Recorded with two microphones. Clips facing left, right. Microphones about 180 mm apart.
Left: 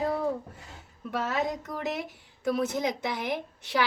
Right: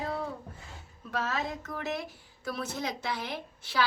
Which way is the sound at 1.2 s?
15° left (ahead or behind).